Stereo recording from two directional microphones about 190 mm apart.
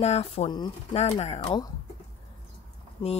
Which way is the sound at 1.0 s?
35° left (ahead or behind).